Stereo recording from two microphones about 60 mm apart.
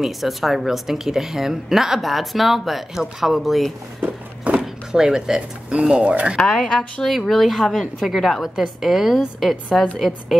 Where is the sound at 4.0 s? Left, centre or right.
Right.